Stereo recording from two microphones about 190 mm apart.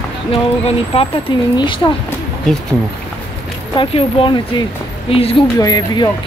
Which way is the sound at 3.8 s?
30° left (ahead or behind).